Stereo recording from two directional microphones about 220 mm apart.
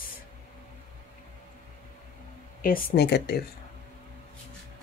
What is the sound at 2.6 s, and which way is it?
Speech, 45° left (ahead or behind).